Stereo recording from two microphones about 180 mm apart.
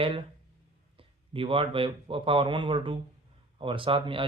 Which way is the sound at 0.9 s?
30° right (ahead or behind).